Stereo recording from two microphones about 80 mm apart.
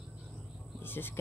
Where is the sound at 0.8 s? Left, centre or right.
Left.